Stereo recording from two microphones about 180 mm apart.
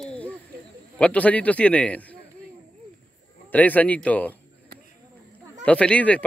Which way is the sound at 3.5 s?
10° left (ahead or behind).